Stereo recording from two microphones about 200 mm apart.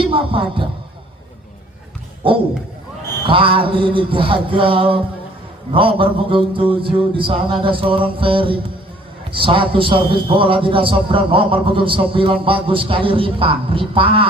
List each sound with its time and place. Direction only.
0.0 s speech: 25° right (ahead or behind)
3.2 s a man's voice: 25° right (ahead or behind)